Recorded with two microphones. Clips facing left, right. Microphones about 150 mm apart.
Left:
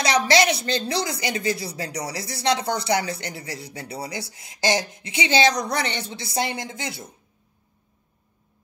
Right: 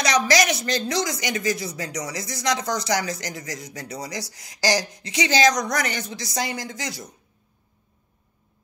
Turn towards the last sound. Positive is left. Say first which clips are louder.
# even
turn(degrees=25)  # may be behind; listen again after turning